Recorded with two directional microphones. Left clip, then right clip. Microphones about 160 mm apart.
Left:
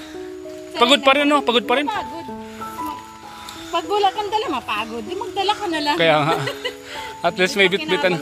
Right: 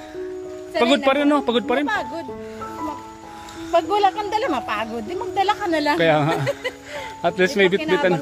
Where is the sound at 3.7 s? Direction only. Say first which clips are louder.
Right 1 dB; 15° right (ahead or behind).